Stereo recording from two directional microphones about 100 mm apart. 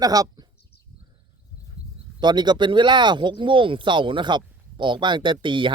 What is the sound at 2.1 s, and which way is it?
Speech, 45° right (ahead or behind).